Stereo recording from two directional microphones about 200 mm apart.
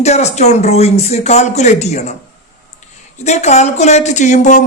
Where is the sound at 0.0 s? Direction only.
35° left (ahead or behind).